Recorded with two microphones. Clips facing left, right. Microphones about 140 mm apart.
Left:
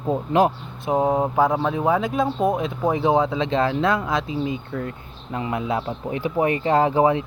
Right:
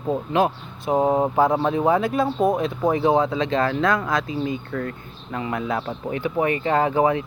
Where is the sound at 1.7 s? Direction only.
5° left (ahead or behind).